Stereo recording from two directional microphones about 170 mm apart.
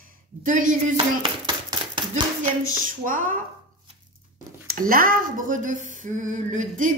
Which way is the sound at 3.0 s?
55° right (ahead or behind).